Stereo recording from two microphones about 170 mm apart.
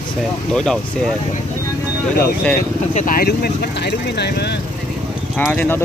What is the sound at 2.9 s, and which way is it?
Speech, 45° left (ahead or behind).